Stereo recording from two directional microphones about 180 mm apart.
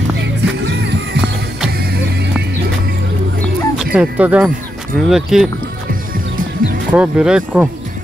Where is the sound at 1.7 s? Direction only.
60° right (ahead or behind).